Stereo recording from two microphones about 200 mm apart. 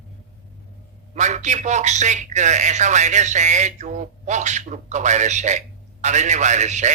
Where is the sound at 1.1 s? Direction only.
35° right (ahead or behind).